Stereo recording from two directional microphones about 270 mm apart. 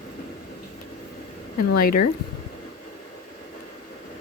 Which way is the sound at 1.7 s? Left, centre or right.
Left.